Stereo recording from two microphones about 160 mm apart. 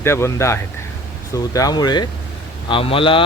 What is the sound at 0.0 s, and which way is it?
Speech, 15° left (ahead or behind).